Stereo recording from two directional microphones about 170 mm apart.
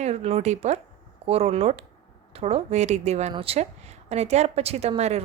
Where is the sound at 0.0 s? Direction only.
40° right (ahead or behind).